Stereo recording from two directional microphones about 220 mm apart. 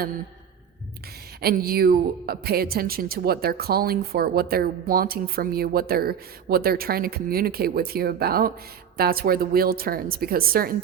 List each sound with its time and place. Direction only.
1.4 s a woman's voice: 45° right (ahead or behind)